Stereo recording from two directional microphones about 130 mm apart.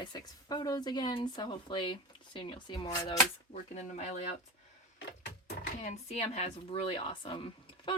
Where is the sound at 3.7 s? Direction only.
60° left (ahead or behind).